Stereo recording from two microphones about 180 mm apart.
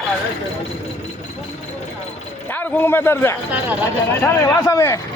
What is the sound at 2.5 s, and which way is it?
A man's voice, 10° left (ahead or behind).